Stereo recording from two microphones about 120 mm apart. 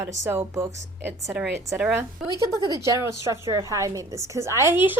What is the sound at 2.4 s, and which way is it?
A woman's voice, 30° right (ahead or behind).